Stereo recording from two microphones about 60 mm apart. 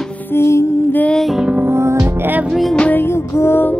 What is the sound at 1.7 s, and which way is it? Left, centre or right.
Music, right.